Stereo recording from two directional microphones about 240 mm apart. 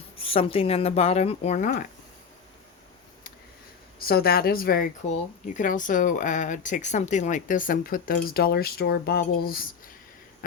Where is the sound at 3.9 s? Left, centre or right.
Left.